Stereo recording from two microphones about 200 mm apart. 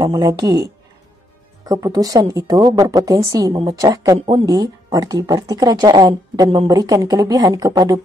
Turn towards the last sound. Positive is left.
turn(degrees=-15)  # may be behind; listen again after turning